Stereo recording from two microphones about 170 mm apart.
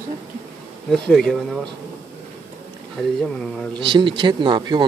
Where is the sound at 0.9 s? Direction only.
5° left (ahead or behind).